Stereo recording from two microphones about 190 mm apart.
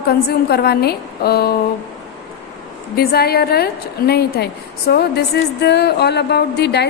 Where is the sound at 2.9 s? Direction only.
55° left (ahead or behind).